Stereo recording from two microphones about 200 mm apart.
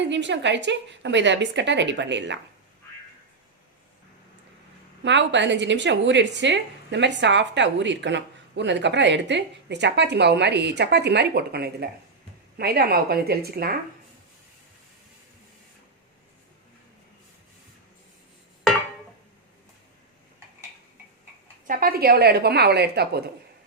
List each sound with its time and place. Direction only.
0.0 s a woman's voice: 60° right (ahead or behind)
5.0 s a woman's voice: 65° right (ahead or behind)
21.7 s a woman's voice: 45° right (ahead or behind)